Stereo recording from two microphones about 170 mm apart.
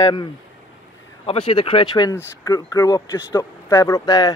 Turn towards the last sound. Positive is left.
turn(degrees=20)  # may be behind; listen again after turning